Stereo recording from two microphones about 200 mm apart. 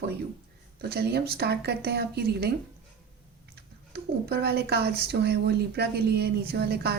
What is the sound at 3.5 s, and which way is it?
A woman's voice, 55° right (ahead or behind).